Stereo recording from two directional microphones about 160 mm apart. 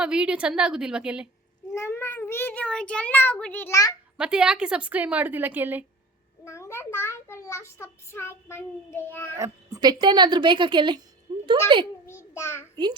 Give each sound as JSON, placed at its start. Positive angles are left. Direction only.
{"t": 0.0, "sound": "a woman's voice", "side_deg": -5}
{"t": 1.7, "sound": "a child's voice", "side_deg": 15}
{"t": 4.2, "sound": "a woman's voice", "side_deg": -5}
{"t": 6.4, "sound": "a child's voice", "side_deg": 15}
{"t": 9.4, "sound": "a woman's voice", "side_deg": -20}
{"t": 11.3, "sound": "a sound", "side_deg": -25}
{"t": 11.7, "sound": "a child's voice", "side_deg": -30}
{"t": 12.0, "sound": "a child's voice", "side_deg": 15}
{"t": 12.7, "sound": "a woman's voice", "side_deg": -25}